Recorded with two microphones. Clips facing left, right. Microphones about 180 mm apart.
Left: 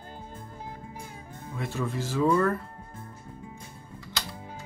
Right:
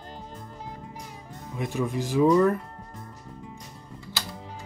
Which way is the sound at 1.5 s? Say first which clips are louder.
Right 3 dB; 15° right (ahead or behind).